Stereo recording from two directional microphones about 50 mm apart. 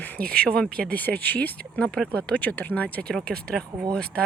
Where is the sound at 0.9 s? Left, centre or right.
Left.